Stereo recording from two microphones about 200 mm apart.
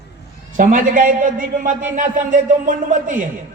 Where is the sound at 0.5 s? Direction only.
40° right (ahead or behind).